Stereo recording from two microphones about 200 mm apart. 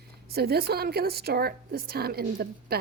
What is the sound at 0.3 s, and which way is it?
A woman's voice, 50° right (ahead or behind).